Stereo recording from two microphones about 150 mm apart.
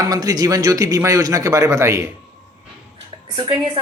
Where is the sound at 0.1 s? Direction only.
25° right (ahead or behind).